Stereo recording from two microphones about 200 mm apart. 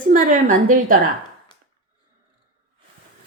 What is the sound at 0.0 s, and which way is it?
Speech, 40° right (ahead or behind).